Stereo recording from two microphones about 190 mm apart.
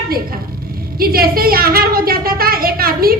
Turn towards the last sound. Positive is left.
turn(degrees=-50)  # may be behind; listen again after turning